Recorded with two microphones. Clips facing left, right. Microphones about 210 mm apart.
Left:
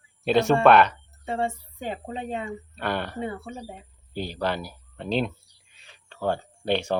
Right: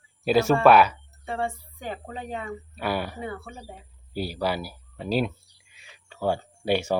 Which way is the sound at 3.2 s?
25° left (ahead or behind).